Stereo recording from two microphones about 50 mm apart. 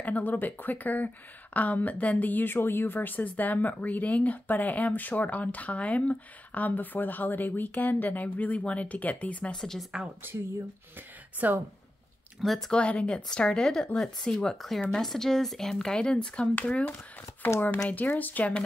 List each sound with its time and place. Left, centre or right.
0.0 s speech: left
9.5 s speech: centre
10.2 s speech: right
11.4 s speech: right
12.4 s speech: centre
12.7 s a woman's voice: left
17.6 s speech: left